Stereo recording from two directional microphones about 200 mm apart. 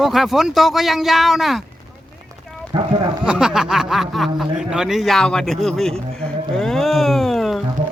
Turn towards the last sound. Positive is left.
turn(degrees=0)  # may be behind; listen again after turning